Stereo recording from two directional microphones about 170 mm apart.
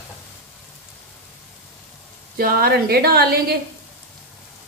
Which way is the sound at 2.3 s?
60° right (ahead or behind).